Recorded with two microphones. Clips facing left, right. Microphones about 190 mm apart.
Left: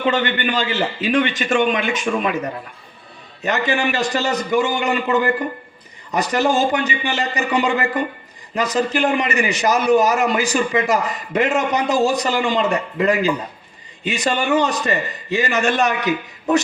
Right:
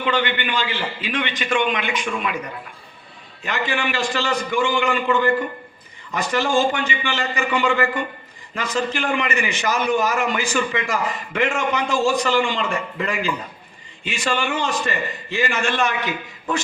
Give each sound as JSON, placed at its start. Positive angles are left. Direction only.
{"t": 0.0, "sound": "a man's voice", "side_deg": 45}